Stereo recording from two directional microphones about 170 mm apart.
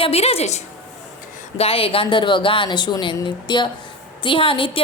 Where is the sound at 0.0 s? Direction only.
35° left (ahead or behind).